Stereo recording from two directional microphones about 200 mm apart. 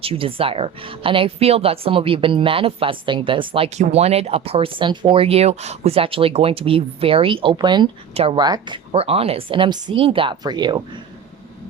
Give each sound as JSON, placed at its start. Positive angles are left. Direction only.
{"t": 0.0, "sound": "a woman's voice", "side_deg": -30}